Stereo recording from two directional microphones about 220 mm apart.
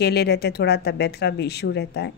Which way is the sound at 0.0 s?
50° left (ahead or behind).